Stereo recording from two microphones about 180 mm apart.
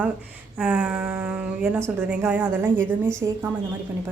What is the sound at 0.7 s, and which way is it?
A woman's voice, 10° right (ahead or behind).